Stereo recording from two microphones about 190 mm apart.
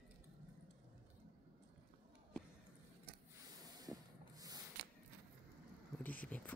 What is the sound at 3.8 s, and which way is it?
Sanding, 20° right (ahead or behind).